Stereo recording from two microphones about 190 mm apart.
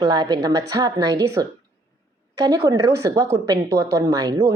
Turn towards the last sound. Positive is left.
turn(degrees=-20)  # may be behind; listen again after turning